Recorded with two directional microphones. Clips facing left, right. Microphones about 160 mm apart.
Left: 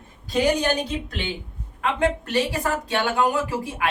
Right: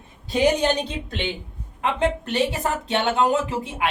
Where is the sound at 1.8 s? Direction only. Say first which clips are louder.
Even; 25° right (ahead or behind).